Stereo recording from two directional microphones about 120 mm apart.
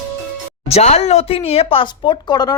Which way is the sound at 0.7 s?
65° left (ahead or behind).